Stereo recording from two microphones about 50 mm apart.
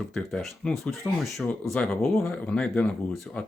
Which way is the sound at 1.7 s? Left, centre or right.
Centre.